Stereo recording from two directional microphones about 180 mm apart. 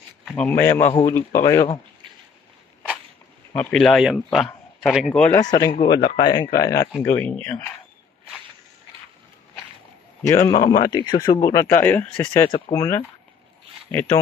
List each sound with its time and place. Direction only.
0.2 s speech: 5° left (ahead or behind)
3.5 s speech: 5° left (ahead or behind)
5.3 s speech: 20° left (ahead or behind)
10.2 s speech: 15° left (ahead or behind)
12.4 s speech: 20° left (ahead or behind)